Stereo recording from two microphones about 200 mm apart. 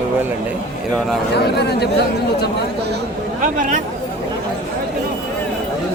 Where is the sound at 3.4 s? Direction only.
40° right (ahead or behind).